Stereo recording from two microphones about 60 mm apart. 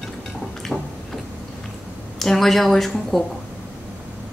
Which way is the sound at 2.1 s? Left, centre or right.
Centre.